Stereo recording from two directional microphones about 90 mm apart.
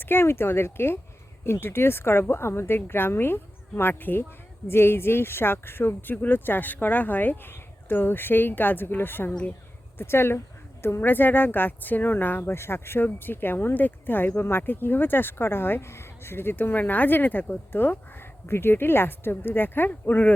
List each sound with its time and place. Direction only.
0.0 s a woman's voice: 25° left (ahead or behind)